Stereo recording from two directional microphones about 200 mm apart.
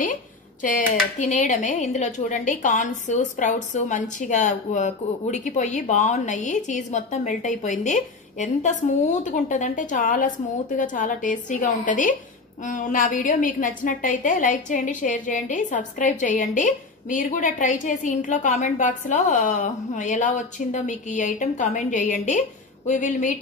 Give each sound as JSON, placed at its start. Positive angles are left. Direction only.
{"t": 0.0, "sound": "speech", "side_deg": 40}